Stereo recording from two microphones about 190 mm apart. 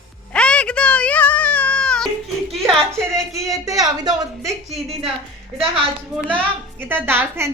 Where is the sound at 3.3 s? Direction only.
15° right (ahead or behind).